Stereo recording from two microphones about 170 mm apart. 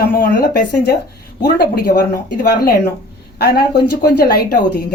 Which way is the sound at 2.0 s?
65° left (ahead or behind).